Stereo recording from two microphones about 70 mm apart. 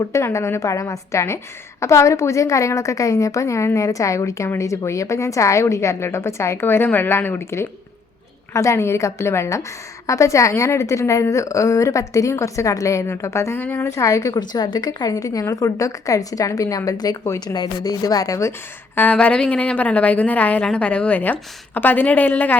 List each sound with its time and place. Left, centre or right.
0.0 s a woman's voice: left
13.6 s a woman's voice: left
13.8 s a woman's voice: left
17.4 s a woman's voice: left
19.1 s a woman's voice: centre